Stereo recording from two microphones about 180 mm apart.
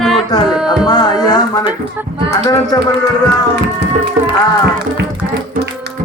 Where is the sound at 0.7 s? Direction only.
20° left (ahead or behind).